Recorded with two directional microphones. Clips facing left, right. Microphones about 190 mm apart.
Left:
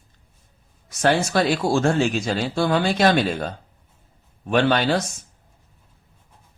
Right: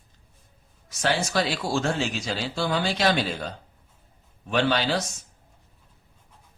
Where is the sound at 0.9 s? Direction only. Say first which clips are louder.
Left 6 dB; 55° left (ahead or behind).